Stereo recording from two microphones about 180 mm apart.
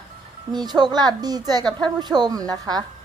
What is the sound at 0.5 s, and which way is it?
Speech, 25° right (ahead or behind).